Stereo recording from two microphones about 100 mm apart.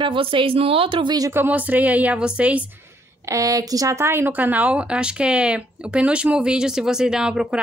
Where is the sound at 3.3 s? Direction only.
35° right (ahead or behind).